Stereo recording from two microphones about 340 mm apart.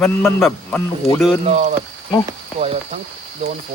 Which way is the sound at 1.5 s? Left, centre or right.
Centre.